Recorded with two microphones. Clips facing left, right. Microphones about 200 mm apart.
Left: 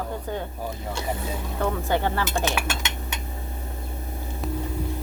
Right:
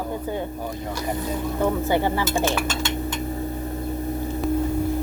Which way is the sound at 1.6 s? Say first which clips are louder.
Right 3 dB; 10° right (ahead or behind).